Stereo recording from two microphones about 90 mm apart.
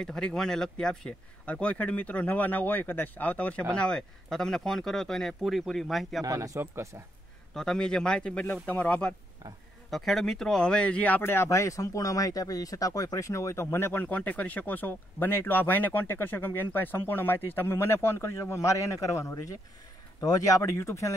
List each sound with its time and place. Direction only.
0.0 s speech: 10° left (ahead or behind)
6.2 s speech: 35° right (ahead or behind)
7.5 s speech: 10° left (ahead or behind)
9.8 s speech: centre (ahead or behind); by 21.1 s 35° left (ahead or behind)